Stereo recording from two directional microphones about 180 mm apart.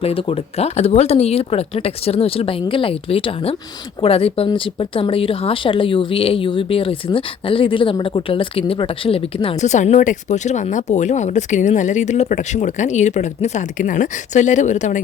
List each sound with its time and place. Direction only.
0.0 s speech: 30° left (ahead or behind)